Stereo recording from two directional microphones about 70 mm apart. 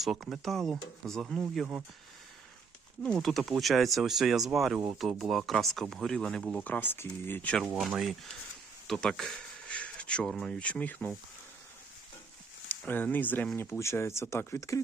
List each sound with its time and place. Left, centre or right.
0.0 s speech: centre
1.2 s speech: centre
3.0 s speech: centre
6.7 s speech: left
7.8 s speech: centre
8.9 s a sound: centre
10.2 s speech: centre
10.6 s speech: centre
12.9 s speech: left
13.6 s speech: left